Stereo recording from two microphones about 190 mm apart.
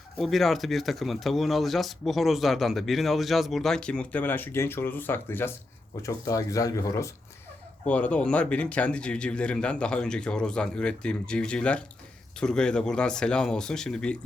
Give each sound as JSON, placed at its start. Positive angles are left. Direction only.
{"t": 0.2, "sound": "speech", "side_deg": 0}